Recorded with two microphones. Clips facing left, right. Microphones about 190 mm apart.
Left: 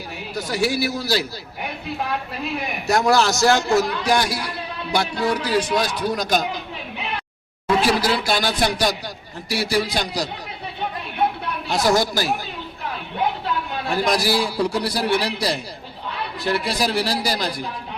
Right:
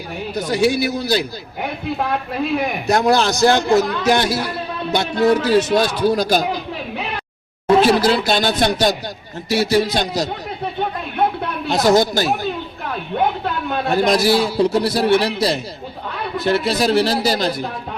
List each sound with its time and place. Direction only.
0.3 s a man's voice: 20° right (ahead or behind)
2.8 s a man's voice: 20° right (ahead or behind)
7.8 s a man's voice: 25° right (ahead or behind)
11.7 s a man's voice: 25° right (ahead or behind)
13.1 s a sound: 50° right (ahead or behind)
14.1 s a man's voice: 25° right (ahead or behind)